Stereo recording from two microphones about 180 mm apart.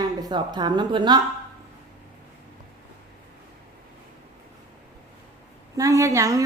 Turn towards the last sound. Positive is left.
turn(degrees=-15)  # may be behind; listen again after turning